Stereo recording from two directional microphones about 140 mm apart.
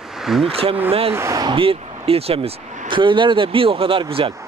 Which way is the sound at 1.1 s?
25° right (ahead or behind).